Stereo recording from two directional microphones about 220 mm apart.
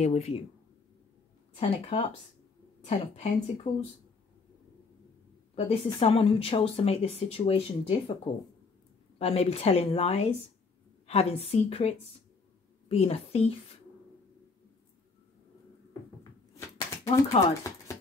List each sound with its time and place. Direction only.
0.0 s speech: 30° left (ahead or behind)
1.5 s speech: 30° left (ahead or behind)
5.6 s speech: 30° left (ahead or behind)
9.2 s a woman's voice: 25° left (ahead or behind)
16.5 s a sound: 10° left (ahead or behind)
17.4 s speech: 25° left (ahead or behind)